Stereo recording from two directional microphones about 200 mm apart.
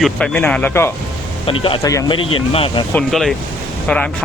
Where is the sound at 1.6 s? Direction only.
20° left (ahead or behind).